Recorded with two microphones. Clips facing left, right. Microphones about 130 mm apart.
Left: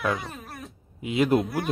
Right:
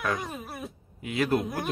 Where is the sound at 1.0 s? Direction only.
20° left (ahead or behind).